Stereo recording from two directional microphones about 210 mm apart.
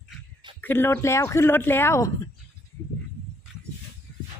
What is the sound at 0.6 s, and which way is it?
Speech, 10° left (ahead or behind).